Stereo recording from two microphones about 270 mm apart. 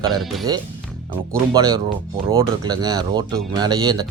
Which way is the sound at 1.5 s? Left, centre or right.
Centre.